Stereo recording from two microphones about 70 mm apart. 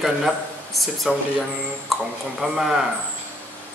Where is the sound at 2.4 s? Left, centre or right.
Centre.